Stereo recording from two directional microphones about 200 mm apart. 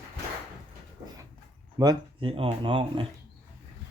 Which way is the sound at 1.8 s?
25° right (ahead or behind).